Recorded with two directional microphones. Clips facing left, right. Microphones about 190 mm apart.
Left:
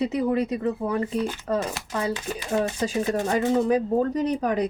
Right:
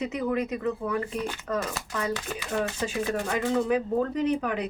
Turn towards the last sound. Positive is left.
turn(degrees=40)  # may be behind; listen again after turning